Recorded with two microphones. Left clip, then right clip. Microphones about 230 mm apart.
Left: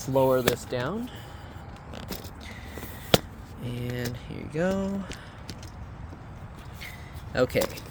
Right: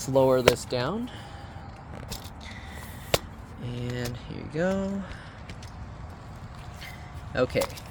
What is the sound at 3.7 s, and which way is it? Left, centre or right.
Speech, centre.